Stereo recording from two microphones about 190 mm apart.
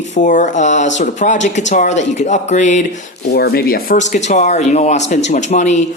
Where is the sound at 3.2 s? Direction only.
55° left (ahead or behind); by 5.8 s 40° left (ahead or behind).